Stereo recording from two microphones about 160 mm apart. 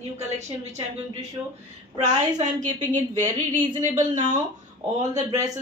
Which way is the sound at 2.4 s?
50° right (ahead or behind).